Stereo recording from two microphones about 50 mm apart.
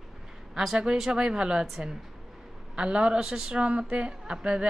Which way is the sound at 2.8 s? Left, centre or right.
Centre.